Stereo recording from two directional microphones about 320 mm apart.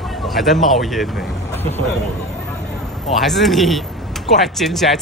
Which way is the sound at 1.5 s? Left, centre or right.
Centre.